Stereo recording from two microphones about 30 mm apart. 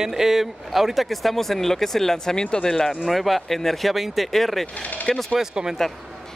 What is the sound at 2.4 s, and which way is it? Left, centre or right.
Speech, left.